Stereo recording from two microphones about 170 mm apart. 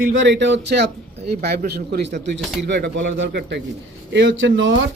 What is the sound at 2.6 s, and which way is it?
A man's voice, 90° right.